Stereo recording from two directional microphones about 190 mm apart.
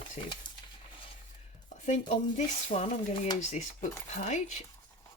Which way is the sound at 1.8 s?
35° left (ahead or behind).